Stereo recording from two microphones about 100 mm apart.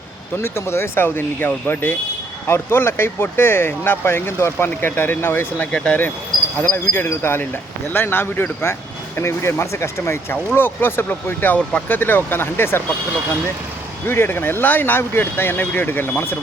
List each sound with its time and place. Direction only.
0.4 s speech: 25° left (ahead or behind)
14.1 s speech: 20° left (ahead or behind)